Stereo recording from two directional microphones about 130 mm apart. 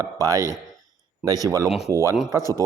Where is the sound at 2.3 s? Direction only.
20° right (ahead or behind).